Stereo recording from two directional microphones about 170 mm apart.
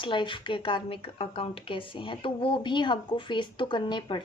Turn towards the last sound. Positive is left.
turn(degrees=30)  # may be behind; listen again after turning